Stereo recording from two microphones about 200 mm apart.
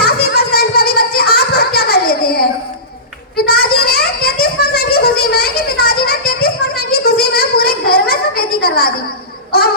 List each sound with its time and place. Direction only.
0.0 s a sound: 50° left (ahead or behind)
6.9 s child singing: 50° left (ahead or behind)
9.5 s baby cry: 50° left (ahead or behind)